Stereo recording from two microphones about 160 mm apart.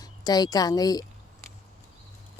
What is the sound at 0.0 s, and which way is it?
A woman's voice, 25° left (ahead or behind).